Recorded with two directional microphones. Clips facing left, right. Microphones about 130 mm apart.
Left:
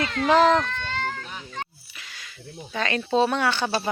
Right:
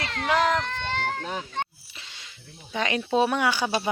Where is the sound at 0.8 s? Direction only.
65° right (ahead or behind).